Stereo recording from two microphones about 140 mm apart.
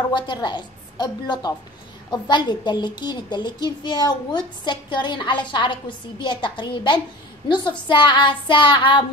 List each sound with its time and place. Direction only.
0.1 s a woman's voice: 35° left (ahead or behind)